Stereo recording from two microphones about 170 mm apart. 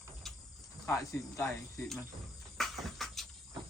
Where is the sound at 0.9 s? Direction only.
15° left (ahead or behind).